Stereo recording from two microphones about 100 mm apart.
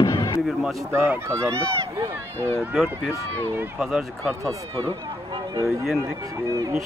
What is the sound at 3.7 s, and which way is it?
Speech, 5° right (ahead or behind).